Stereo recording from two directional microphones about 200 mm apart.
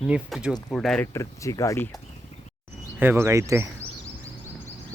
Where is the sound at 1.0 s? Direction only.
15° left (ahead or behind).